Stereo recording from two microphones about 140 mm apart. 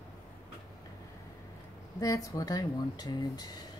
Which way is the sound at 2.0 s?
25° left (ahead or behind).